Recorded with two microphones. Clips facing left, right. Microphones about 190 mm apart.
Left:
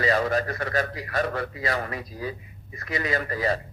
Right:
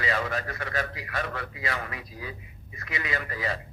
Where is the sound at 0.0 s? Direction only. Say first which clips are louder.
Left 6 dB; 40° left (ahead or behind).